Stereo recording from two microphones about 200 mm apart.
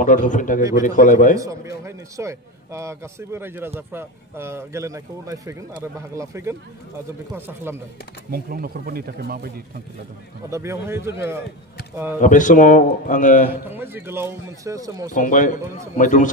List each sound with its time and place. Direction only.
0.0 s a man's voice: 40° left (ahead or behind)
0.6 s a man's voice: 15° right (ahead or behind)
0.8 s a man's voice: 40° left (ahead or behind)
1.3 s a man's voice: 15° right (ahead or behind)
8.3 s speech: 50° right (ahead or behind)
10.5 s a man's voice: 15° right (ahead or behind)
12.2 s a man's voice: 40° left (ahead or behind)
13.5 s a man's voice: 10° right (ahead or behind)
15.1 s a man's voice: 40° left (ahead or behind)